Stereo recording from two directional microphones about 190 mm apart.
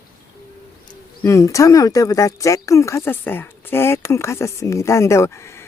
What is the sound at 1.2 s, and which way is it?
Speech, 15° left (ahead or behind).